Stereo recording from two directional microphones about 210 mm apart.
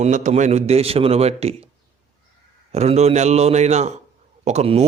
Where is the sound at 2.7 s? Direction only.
30° right (ahead or behind).